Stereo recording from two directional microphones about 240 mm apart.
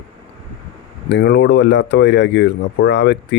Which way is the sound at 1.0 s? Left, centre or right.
Left.